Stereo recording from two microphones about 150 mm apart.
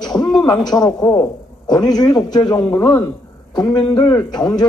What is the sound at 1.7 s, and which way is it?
Speech, 25° left (ahead or behind).